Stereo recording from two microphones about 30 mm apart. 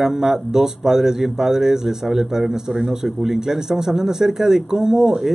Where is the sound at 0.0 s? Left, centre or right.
Centre.